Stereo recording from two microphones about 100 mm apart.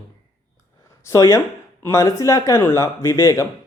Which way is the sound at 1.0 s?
35° left (ahead or behind).